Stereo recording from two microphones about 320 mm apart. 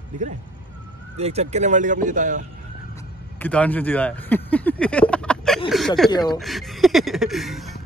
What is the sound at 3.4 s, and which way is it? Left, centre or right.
Speech, centre.